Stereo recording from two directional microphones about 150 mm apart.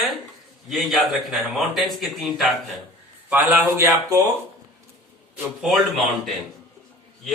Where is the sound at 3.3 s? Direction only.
10° right (ahead or behind).